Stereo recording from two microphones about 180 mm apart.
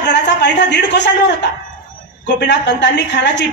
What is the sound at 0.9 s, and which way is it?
Speech, 70° left (ahead or behind).